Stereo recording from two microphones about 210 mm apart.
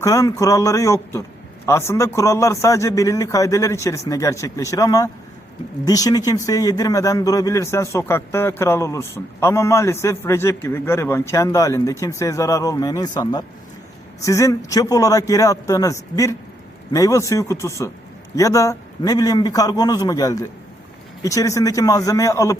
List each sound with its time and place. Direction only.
0.0 s speech: 15° left (ahead or behind)